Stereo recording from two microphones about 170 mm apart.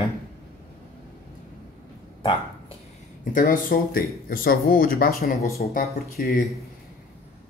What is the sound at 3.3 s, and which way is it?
Speech, 55° left (ahead or behind).